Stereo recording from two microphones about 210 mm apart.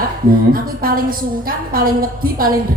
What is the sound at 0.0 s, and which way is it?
A woman's voice, 45° right (ahead or behind).